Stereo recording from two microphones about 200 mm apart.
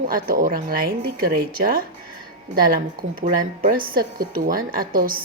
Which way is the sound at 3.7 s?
45° right (ahead or behind).